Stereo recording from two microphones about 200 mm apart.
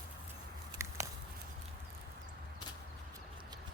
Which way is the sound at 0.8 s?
15° right (ahead or behind).